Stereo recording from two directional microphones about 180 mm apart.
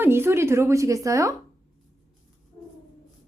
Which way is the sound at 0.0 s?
15° right (ahead or behind).